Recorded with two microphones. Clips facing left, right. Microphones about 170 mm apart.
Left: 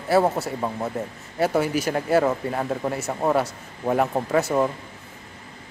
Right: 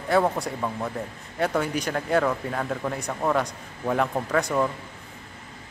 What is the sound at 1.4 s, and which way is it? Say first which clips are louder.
Speech: left 3 dB; 5° left (ahead or behind).